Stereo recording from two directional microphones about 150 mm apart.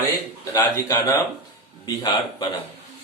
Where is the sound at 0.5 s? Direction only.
20° left (ahead or behind).